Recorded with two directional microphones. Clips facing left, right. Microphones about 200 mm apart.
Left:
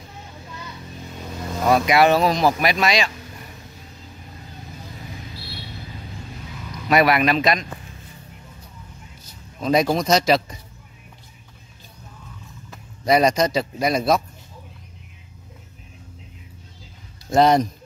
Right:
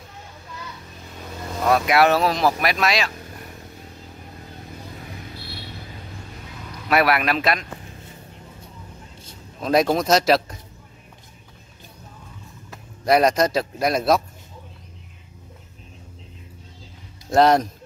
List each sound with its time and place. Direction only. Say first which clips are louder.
1.2 s speech: left 1 dB; 5° left (ahead or behind)
6.9 s speech: left 2 dB; 5° right (ahead or behind)
9.6 s speech: even; centre (ahead or behind)
12.7 s speech: even; centre (ahead or behind)
17.3 s speech: even; centre (ahead or behind)